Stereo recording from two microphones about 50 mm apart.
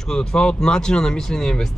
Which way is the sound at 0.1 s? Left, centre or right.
Centre.